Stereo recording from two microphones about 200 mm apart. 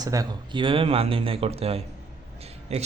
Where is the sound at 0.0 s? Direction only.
20° right (ahead or behind).